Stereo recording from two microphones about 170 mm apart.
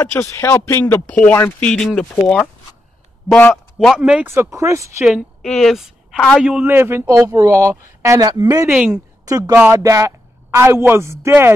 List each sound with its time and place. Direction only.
0.0 s a woman's voice: 15° left (ahead or behind); by 5.0 s 20° right (ahead or behind)
5.0 s a woman's voice: centre (ahead or behind); by 8.7 s 20° right (ahead or behind)
8.7 s speech: 5° right (ahead or behind)
9.2 s a woman's voice: 20° right (ahead or behind)